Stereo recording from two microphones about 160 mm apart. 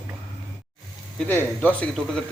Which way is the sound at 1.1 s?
10° left (ahead or behind).